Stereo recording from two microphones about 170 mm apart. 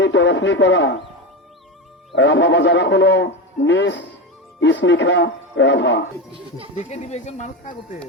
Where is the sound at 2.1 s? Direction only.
90° left.